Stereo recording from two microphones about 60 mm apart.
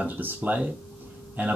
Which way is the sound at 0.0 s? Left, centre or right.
Right.